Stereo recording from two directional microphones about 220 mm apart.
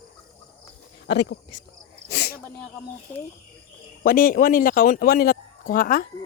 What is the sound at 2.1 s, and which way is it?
Sneeze, 45° left (ahead or behind).